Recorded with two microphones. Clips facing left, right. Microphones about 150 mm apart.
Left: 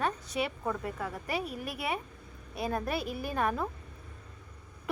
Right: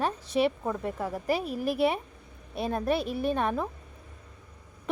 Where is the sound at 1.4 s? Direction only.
Centre (ahead or behind).